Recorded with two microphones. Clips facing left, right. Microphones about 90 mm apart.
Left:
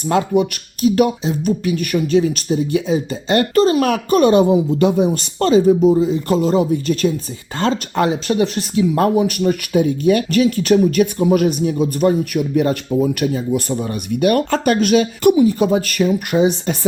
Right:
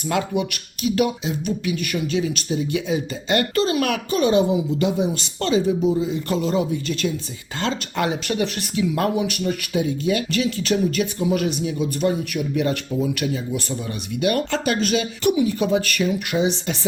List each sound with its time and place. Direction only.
0.0 s speech: 35° left (ahead or behind)
4.1 s speech: 50° left (ahead or behind)
15.0 s speech: 35° left (ahead or behind)